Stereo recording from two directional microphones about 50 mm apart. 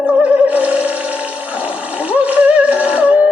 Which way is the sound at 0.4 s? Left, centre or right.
Right.